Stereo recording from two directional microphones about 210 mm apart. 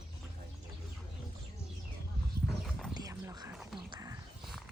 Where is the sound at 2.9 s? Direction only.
15° right (ahead or behind).